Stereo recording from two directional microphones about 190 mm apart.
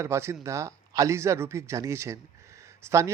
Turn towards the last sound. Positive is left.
turn(degrees=-15)  # may be behind; listen again after turning